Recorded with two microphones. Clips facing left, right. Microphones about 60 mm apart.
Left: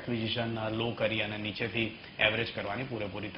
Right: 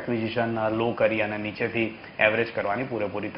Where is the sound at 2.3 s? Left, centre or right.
Right.